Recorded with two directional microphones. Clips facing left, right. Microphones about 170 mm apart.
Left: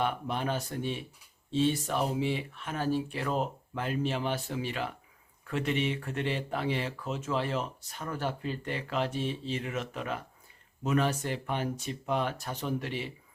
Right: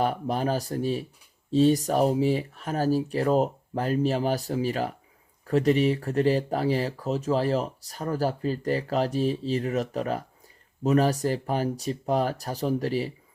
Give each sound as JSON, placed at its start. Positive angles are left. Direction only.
{"t": 0.0, "sound": "speech", "side_deg": -40}